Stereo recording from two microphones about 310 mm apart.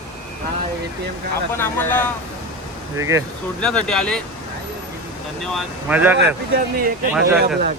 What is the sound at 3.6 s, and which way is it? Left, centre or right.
Speech, centre.